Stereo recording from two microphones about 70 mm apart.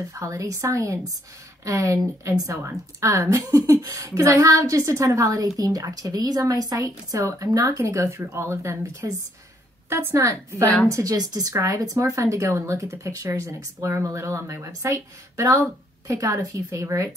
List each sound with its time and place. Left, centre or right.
0.1 s a woman's voice: right
11.1 s a woman's voice: right